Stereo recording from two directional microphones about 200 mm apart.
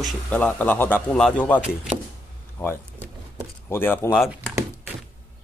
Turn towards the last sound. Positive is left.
turn(degrees=-5)  # may be behind; listen again after turning